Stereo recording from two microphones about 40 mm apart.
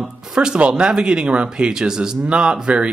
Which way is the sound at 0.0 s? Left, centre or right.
Centre.